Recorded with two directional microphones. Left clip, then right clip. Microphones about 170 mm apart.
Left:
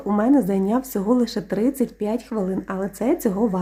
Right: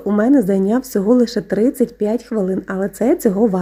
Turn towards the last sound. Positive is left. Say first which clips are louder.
# right 6 dB
turn(degrees=-20)  # may be behind; listen again after turning